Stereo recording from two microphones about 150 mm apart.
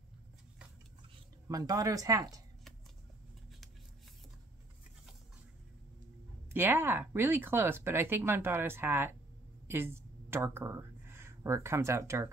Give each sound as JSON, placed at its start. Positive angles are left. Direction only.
{"t": 1.5, "sound": "speech", "side_deg": -25}
{"t": 6.5, "sound": "a woman's voice", "side_deg": -15}